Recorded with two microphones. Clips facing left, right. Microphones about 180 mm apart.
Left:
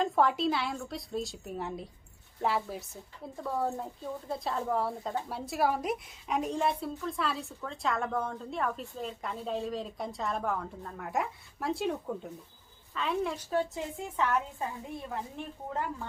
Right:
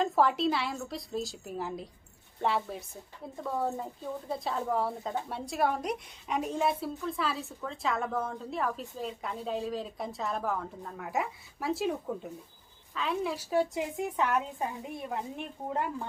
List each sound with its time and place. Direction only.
0.0 s a woman's voice: centre (ahead or behind); by 16.0 s 15° right (ahead or behind)